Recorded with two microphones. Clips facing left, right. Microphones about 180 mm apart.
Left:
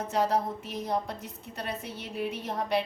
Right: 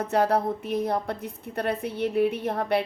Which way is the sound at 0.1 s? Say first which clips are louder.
Right 4 dB; 60° right (ahead or behind).